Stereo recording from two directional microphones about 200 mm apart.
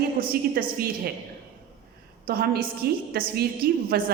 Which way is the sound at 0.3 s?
50° right (ahead or behind).